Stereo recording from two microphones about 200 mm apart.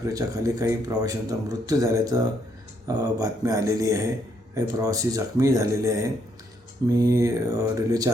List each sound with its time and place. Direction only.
0.1 s speech: 15° right (ahead or behind)